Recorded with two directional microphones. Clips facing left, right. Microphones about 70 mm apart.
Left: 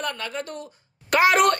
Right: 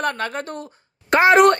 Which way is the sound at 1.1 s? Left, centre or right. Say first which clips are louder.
Right 5 dB; right.